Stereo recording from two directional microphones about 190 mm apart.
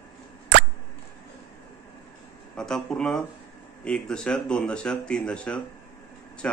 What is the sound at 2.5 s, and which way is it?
Speech, 5° left (ahead or behind).